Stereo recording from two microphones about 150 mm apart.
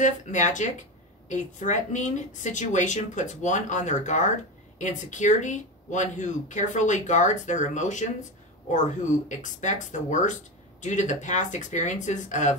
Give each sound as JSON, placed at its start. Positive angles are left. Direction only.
{"t": 0.0, "sound": "speech", "side_deg": 55}
{"t": 9.3, "sound": "speech", "side_deg": 55}